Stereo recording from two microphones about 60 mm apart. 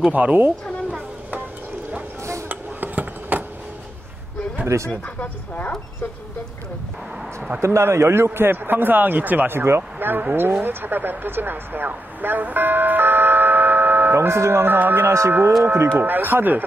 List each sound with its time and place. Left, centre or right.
0.1 s speech: right
2.4 s a sound: right
4.6 s speech: right
5.0 s speech: left
7.6 s a man's voice: right
14.1 s a man's voice: right